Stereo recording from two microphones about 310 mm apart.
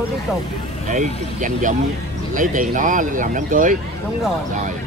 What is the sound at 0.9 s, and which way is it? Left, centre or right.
Speech, right.